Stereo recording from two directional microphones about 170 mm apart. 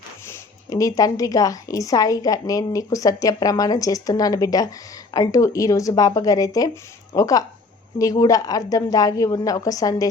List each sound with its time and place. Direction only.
0.3 s a woman's voice: 20° left (ahead or behind)